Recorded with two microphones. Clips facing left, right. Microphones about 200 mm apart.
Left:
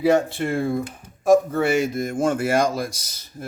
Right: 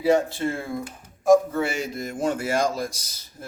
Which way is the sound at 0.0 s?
65° left (ahead or behind).